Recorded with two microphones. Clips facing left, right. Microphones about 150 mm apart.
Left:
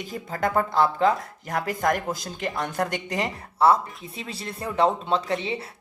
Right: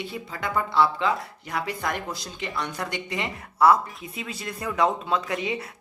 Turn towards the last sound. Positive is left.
turn(degrees=30)  # may be behind; listen again after turning